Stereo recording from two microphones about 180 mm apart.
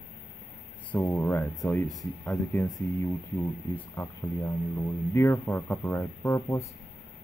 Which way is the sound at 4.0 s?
10° left (ahead or behind).